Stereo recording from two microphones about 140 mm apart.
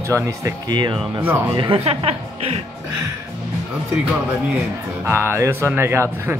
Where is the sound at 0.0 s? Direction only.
20° right (ahead or behind); by 2.6 s 45° right (ahead or behind).